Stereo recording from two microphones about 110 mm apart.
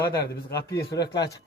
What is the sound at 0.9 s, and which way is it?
Speech, 40° left (ahead or behind).